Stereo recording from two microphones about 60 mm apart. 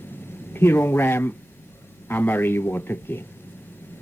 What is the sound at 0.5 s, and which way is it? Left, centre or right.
Speech, left.